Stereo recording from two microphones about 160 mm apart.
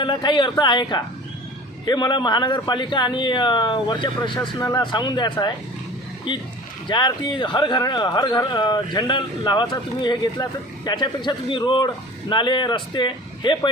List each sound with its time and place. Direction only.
0.0 s speech: 30° left (ahead or behind)